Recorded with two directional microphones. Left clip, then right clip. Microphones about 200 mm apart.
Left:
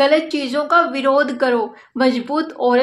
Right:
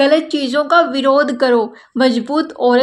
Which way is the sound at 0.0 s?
40° right (ahead or behind).